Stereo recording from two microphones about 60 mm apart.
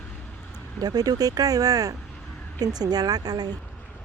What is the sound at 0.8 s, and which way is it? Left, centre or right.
Speech, right.